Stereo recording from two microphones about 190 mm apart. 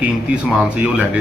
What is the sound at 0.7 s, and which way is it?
Speech, 5° right (ahead or behind).